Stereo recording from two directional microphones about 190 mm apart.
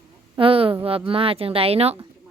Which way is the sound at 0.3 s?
30° right (ahead or behind).